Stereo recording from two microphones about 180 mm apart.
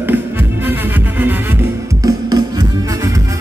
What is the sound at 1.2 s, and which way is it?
Music, 15° right (ahead or behind).